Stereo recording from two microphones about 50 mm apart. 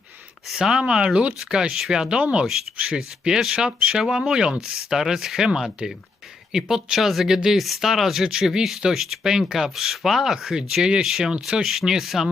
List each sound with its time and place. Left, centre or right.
0.5 s speech: centre